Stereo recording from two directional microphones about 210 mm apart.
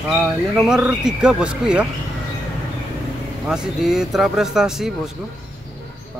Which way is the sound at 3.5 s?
5° right (ahead or behind).